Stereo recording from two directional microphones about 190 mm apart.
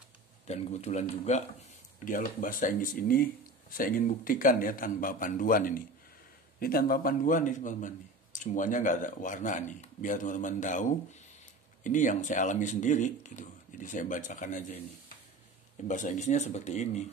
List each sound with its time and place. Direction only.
0.5 s speech: 35° left (ahead or behind)
15.9 s speech: 40° left (ahead or behind)